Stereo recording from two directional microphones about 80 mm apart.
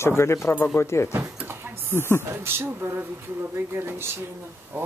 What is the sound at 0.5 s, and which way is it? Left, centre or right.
Speech, left.